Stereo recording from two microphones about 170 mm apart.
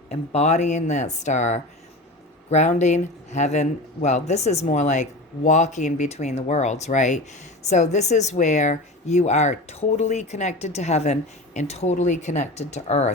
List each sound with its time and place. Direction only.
0.1 s speech: 40° left (ahead or behind)